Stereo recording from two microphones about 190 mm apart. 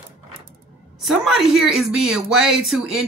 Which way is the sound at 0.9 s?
Centre (ahead or behind).